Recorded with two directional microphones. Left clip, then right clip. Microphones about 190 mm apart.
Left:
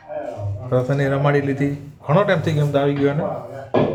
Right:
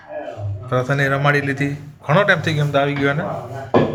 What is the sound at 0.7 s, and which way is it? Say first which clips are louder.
Speech: right 1 dB; 10° left (ahead or behind).